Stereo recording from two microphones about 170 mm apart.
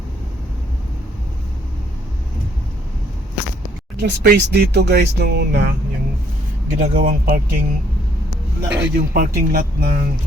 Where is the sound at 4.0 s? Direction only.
70° right (ahead or behind).